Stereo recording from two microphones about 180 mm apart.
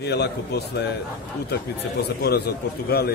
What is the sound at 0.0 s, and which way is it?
Speech, 65° left (ahead or behind).